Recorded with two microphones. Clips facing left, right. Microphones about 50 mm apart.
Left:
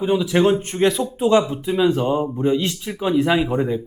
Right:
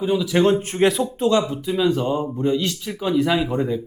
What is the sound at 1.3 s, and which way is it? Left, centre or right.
A man's voice, left.